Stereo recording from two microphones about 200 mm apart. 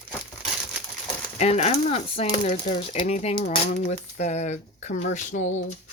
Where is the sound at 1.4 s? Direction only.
35° left (ahead or behind).